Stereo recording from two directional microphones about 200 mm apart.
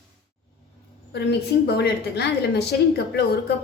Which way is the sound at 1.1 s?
55° left (ahead or behind).